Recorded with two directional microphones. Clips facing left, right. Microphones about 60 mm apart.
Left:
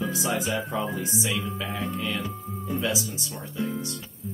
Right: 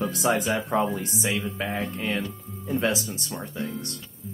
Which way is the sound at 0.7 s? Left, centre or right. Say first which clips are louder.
Right 8 dB; right.